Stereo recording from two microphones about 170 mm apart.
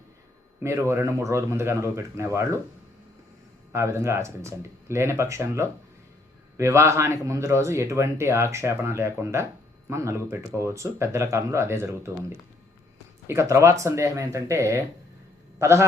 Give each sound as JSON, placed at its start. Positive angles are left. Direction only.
{"t": 0.6, "sound": "speech", "side_deg": -15}
{"t": 3.7, "sound": "speech", "side_deg": -15}
{"t": 13.2, "sound": "a man's voice", "side_deg": -15}